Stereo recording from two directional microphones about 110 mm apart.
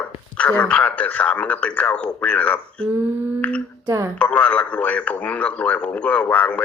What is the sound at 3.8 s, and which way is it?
Speech, 25° right (ahead or behind).